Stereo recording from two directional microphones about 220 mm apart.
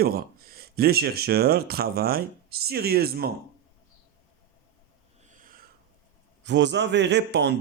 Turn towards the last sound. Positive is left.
turn(degrees=-50)  # may be behind; listen again after turning